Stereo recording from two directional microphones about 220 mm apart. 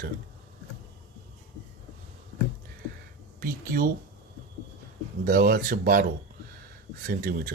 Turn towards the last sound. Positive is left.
turn(degrees=-40)  # may be behind; listen again after turning